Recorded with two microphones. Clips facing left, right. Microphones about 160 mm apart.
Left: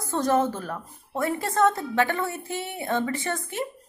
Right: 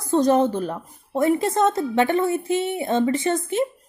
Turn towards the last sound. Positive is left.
turn(degrees=-20)  # may be behind; listen again after turning